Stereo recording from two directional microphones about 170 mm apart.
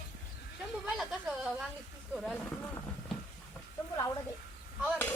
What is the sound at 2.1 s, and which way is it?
Speech, centre (ahead or behind).